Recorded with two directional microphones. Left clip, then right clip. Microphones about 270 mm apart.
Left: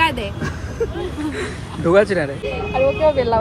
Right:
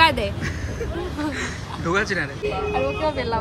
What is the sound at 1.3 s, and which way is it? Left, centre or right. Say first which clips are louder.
Speech: left 2 dB; centre.